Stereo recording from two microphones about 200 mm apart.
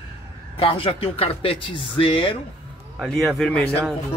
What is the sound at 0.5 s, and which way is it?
Speech, 30° left (ahead or behind).